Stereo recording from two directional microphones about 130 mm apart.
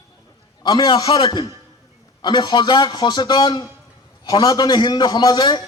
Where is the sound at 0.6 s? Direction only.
35° left (ahead or behind).